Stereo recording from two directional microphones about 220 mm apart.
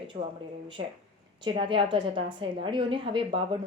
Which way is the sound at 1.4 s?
25° right (ahead or behind).